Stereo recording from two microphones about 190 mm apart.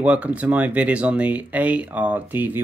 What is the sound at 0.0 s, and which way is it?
Speech, 5° right (ahead or behind).